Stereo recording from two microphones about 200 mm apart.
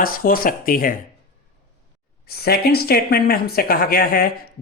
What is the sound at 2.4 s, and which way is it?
Speech, 50° left (ahead or behind).